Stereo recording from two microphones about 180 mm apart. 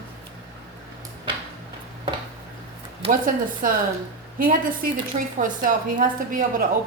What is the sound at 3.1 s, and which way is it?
A woman's voice, 50° right (ahead or behind).